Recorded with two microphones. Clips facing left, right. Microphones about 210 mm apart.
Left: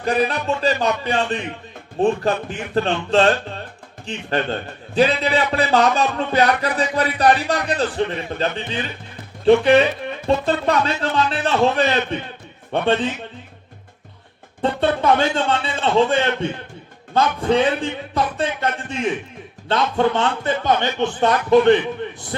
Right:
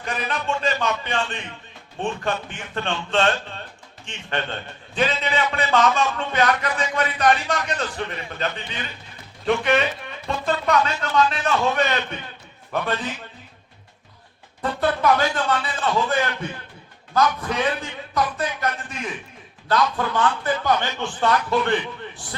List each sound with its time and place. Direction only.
0.0 s music: 35° left (ahead or behind)
12.7 s speech: 30° left (ahead or behind)
14.6 s speech: 25° left (ahead or behind)